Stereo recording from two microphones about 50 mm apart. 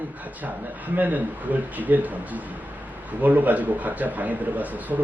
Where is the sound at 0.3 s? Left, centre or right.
Right.